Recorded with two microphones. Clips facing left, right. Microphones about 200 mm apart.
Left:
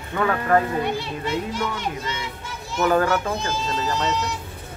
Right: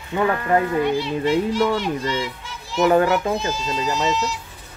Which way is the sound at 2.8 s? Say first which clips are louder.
Right 3 dB; 20° right (ahead or behind).